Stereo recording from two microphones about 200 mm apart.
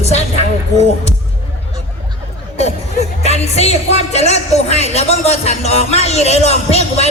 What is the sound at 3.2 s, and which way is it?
Music, 30° left (ahead or behind).